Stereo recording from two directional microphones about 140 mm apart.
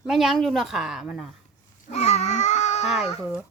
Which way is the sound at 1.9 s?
50° left (ahead or behind).